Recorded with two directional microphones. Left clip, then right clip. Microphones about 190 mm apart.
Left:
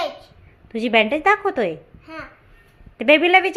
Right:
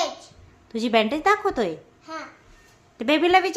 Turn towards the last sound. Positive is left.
turn(degrees=0)  # may be behind; listen again after turning